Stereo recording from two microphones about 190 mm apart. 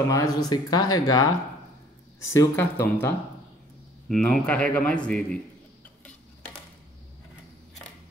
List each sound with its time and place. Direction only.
0.1 s speech: 20° left (ahead or behind)
2.3 s a man's voice: 10° left (ahead or behind)